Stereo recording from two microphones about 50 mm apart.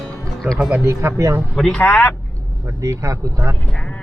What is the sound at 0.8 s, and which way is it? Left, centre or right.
Speech, right.